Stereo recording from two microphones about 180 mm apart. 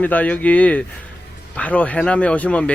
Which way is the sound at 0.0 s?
10° left (ahead or behind).